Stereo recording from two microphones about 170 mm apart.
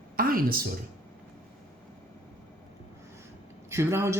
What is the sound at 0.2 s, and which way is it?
Speech, 55° right (ahead or behind).